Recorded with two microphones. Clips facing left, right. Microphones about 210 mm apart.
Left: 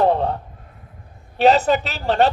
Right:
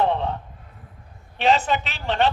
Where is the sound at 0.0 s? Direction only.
40° left (ahead or behind).